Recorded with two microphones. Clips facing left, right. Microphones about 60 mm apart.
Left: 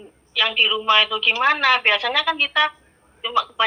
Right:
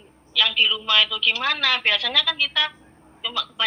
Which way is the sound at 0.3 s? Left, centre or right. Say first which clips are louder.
Left 2 dB; left.